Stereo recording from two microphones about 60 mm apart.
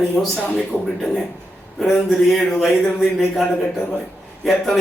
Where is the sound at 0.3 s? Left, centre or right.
Left.